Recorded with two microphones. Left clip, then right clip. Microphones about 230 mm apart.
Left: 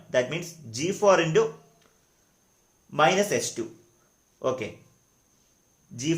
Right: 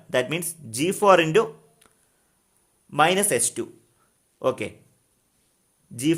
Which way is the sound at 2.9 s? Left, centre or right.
Right.